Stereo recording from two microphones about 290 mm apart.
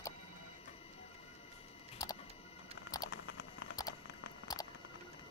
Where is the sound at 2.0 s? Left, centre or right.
Centre.